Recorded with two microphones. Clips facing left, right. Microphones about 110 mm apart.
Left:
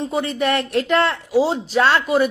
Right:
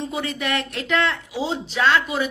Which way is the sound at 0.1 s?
40° left (ahead or behind).